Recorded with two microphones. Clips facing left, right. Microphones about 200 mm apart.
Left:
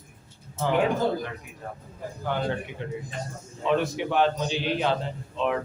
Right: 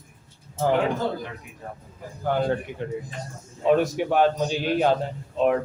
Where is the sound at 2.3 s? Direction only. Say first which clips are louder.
Right 5 dB; 45° right (ahead or behind).